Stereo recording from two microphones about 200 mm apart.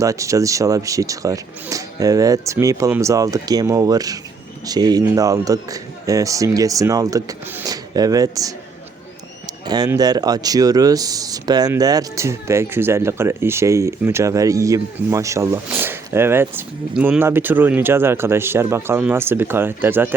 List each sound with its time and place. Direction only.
0.0 s speech: 15° right (ahead or behind)
9.6 s speech: 20° right (ahead or behind)